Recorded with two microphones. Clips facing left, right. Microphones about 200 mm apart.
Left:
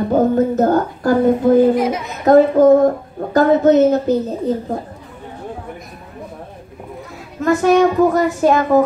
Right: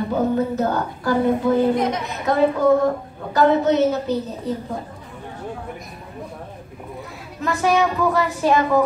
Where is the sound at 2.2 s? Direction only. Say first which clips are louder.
Left 8 dB; 45° left (ahead or behind).